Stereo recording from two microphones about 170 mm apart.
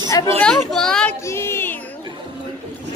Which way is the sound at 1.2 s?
15° left (ahead or behind).